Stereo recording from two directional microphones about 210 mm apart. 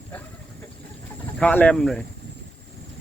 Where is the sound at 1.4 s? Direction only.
5° left (ahead or behind).